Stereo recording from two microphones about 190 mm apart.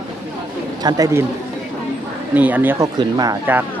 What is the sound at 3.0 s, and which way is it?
Speech, 20° right (ahead or behind).